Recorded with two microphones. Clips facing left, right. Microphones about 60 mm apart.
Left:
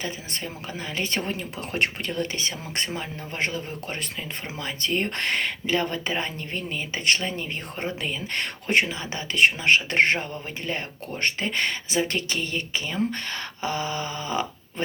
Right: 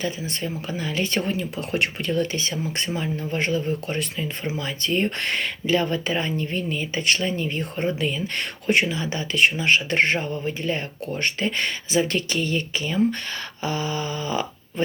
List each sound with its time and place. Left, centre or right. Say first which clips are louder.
0.0 s speech: right 5 dB; left